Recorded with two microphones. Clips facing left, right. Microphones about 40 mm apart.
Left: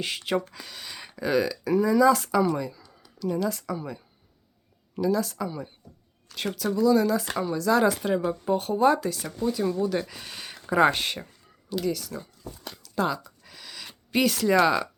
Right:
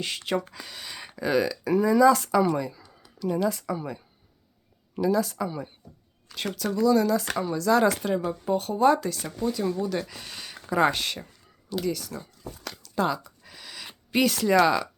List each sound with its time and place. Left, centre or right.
0.0 s speech: centre
6.2 s speech: centre
11.8 s speech: centre
12.7 s a sound: centre
14.6 s speech: centre